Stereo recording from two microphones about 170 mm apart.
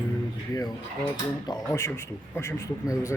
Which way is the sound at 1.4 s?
20° left (ahead or behind).